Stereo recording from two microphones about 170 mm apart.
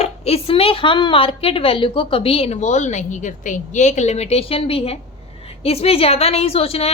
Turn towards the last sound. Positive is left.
turn(degrees=35)  # may be behind; listen again after turning